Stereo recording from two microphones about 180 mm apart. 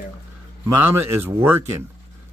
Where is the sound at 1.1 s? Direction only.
10° right (ahead or behind).